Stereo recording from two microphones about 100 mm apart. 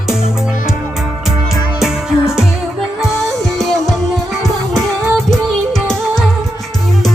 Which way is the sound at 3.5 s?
Centre (ahead or behind).